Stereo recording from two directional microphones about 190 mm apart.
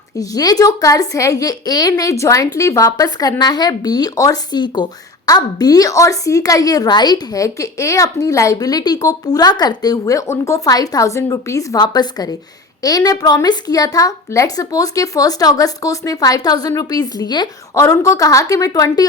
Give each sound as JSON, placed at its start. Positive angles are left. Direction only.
{"t": 0.2, "sound": "a woman's voice", "side_deg": 20}